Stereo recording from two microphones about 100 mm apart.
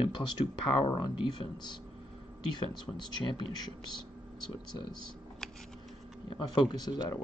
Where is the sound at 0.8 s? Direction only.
55° left (ahead or behind).